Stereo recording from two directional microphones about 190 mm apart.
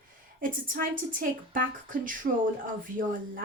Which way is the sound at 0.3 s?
50° right (ahead or behind).